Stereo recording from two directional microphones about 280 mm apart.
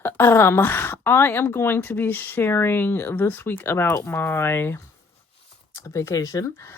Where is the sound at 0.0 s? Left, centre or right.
Centre.